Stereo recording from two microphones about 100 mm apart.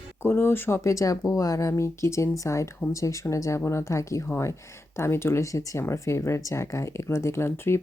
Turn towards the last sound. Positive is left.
turn(degrees=25)  # may be behind; listen again after turning